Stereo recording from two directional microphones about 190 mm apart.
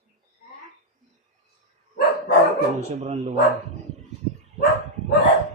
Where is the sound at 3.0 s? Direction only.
35° right (ahead or behind).